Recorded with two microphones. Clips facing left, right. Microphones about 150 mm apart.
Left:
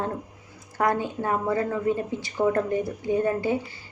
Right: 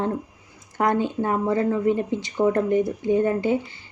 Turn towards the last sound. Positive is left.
turn(degrees=-25)  # may be behind; listen again after turning